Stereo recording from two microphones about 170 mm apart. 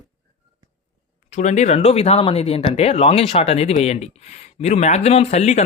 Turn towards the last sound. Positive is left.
turn(degrees=40)  # may be behind; listen again after turning